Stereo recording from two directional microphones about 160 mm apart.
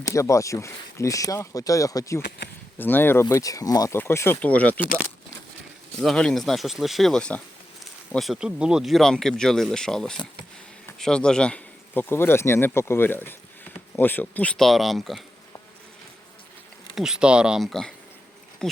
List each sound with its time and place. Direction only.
0.1 s speech: 20° left (ahead or behind)
6.0 s speech: 5° left (ahead or behind)
16.9 s speech: 5° right (ahead or behind)
18.6 s bee: 5° left (ahead or behind)